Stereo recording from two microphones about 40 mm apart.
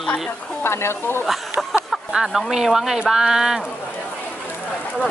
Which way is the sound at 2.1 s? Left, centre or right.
Centre.